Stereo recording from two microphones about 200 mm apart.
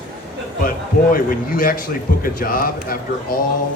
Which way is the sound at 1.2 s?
45° left (ahead or behind).